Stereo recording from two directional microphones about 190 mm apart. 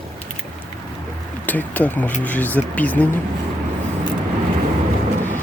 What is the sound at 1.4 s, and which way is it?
Speech, 10° left (ahead or behind).